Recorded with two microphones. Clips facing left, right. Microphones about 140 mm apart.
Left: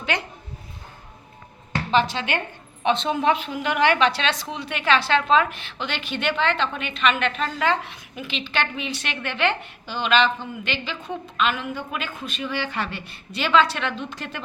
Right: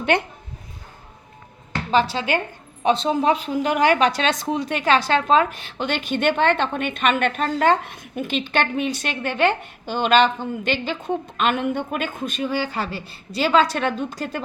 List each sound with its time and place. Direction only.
0.0 s speech: 55° right (ahead or behind)
1.9 s a woman's voice: 40° right (ahead or behind)